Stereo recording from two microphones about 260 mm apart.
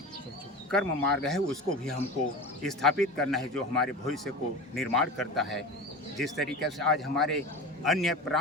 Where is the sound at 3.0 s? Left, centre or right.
Centre.